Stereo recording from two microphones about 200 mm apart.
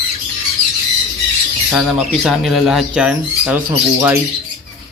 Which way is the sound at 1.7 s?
Centre (ahead or behind).